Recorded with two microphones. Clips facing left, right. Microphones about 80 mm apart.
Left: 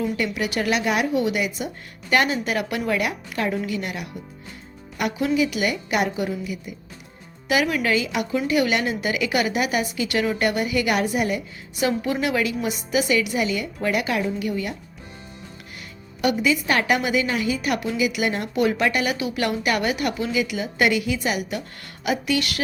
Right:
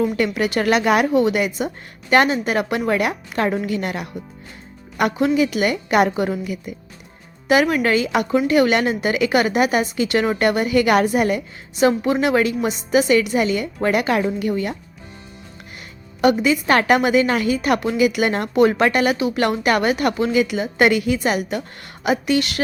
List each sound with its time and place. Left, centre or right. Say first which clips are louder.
0.2 s a woman's voice: right 5 dB; right
7.4 s a woman's voice: right 5 dB; right
11.8 s a woman's voice: right 6 dB; right
16.2 s a woman's voice: right 5 dB; right
22.0 s speech: right 4 dB; right